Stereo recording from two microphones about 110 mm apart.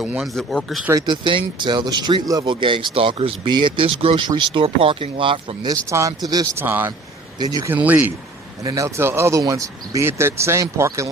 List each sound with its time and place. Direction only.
0.0 s speech: 5° right (ahead or behind)
0.9 s speech: 45° right (ahead or behind)
2.4 s speech: 50° right (ahead or behind)
4.3 s speech: 50° right (ahead or behind)
5.6 s speech: 30° right (ahead or behind)
6.7 s speech: 20° right (ahead or behind)
7.3 s speech: 35° right (ahead or behind)
7.7 s speech: 15° right (ahead or behind)
8.6 s speech: 30° right (ahead or behind)